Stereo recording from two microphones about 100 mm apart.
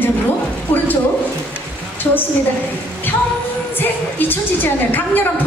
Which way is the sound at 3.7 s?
20° left (ahead or behind).